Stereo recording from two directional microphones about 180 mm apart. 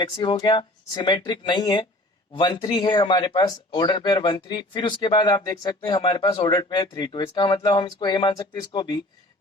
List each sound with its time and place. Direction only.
0.0 s speech: 25° left (ahead or behind)